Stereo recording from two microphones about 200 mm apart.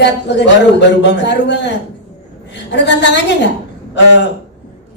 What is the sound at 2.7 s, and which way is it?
Speech, 60° left (ahead or behind).